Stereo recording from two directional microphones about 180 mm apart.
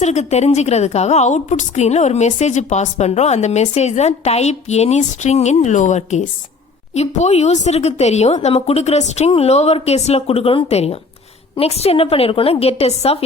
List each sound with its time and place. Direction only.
0.0 s a woman's voice: 40° left (ahead or behind)